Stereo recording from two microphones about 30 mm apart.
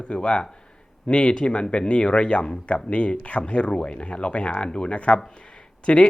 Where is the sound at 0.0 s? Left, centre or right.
Left.